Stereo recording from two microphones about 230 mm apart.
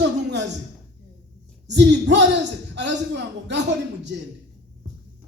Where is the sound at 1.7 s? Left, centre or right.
Right.